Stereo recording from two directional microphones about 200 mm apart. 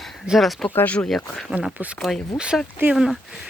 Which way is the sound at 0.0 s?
Centre (ahead or behind).